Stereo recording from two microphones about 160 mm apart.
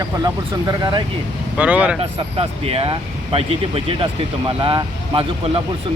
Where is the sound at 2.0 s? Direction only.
35° right (ahead or behind).